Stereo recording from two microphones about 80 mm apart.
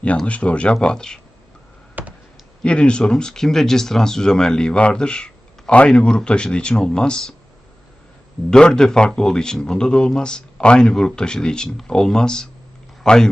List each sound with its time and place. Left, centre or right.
0.3 s speech: centre
2.0 s a sound: right
2.6 s speech: centre
8.4 s a man's voice: centre